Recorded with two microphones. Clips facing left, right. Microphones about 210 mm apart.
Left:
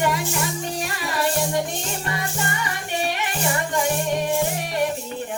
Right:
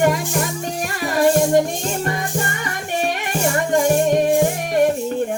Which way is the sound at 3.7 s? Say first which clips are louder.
Right 10 dB; 50° right (ahead or behind).